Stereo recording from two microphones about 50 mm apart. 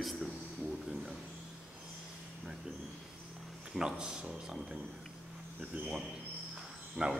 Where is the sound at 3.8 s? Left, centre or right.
Centre.